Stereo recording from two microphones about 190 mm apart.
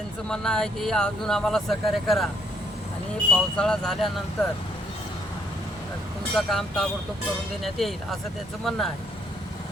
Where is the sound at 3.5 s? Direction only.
5° left (ahead or behind).